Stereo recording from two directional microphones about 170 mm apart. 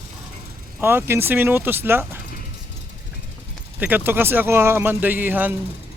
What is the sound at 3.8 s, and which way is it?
A man's voice, 10° right (ahead or behind).